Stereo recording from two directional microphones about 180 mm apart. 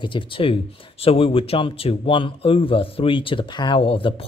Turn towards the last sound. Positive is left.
turn(degrees=30)  # may be behind; listen again after turning